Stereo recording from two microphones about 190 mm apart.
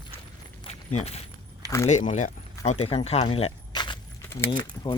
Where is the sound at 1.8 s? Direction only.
40° left (ahead or behind).